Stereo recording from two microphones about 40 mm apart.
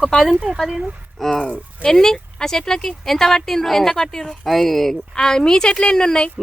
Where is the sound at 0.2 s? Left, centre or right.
Centre.